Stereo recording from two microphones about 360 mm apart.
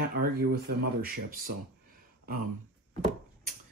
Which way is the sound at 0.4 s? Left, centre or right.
Right.